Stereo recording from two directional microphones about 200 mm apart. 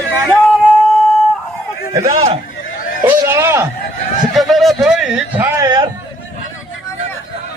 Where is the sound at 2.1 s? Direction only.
30° right (ahead or behind).